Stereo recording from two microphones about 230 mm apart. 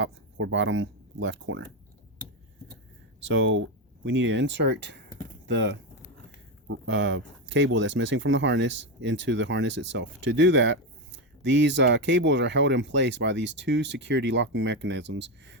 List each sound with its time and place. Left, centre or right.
0.0 s speech: right
3.2 s speech: right